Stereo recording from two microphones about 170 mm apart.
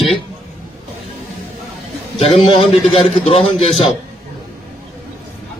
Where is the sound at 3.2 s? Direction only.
35° left (ahead or behind).